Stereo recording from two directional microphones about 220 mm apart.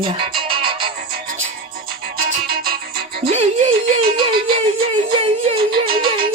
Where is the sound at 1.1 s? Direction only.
40° right (ahead or behind).